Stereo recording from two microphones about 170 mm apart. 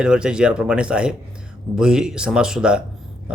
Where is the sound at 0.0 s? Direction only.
5° right (ahead or behind).